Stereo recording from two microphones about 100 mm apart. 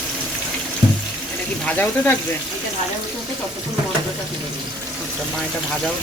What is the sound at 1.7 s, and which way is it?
Speech, 15° left (ahead or behind).